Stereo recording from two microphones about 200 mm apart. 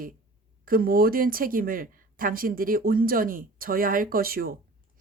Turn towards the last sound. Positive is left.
turn(degrees=-50)  # may be behind; listen again after turning